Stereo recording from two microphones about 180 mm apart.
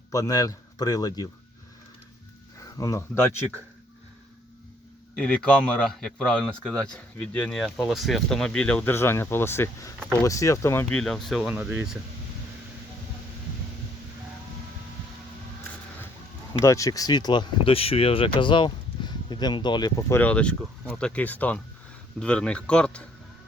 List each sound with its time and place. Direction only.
0.1 s speech: 20° left (ahead or behind)
2.6 s a sound: 20° left (ahead or behind)
5.1 s a man's voice: 5° left (ahead or behind)
11.0 s a man's voice: centre (ahead or behind)
16.5 s a man's voice: 20° left (ahead or behind)